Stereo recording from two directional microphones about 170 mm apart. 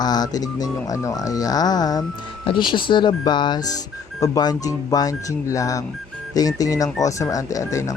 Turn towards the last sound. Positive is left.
turn(degrees=20)  # may be behind; listen again after turning